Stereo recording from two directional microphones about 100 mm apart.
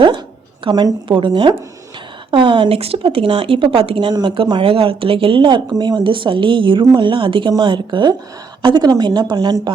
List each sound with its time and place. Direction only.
0.7 s speech: 45° right (ahead or behind); by 4.1 s 65° right (ahead or behind)
4.1 s a woman's voice: 55° right (ahead or behind)